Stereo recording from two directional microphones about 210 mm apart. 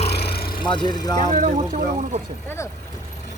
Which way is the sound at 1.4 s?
40° right (ahead or behind).